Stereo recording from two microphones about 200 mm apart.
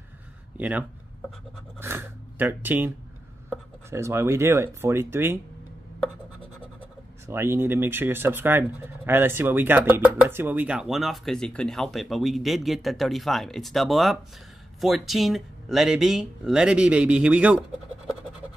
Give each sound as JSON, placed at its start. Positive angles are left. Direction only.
{"t": 0.6, "sound": "speech", "side_deg": -10}
{"t": 1.8, "sound": "a sound", "side_deg": -10}
{"t": 3.9, "sound": "speech", "side_deg": -15}
{"t": 7.2, "sound": "speech", "side_deg": -10}